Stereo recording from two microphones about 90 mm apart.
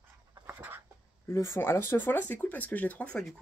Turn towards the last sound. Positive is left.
turn(degrees=15)  # may be behind; listen again after turning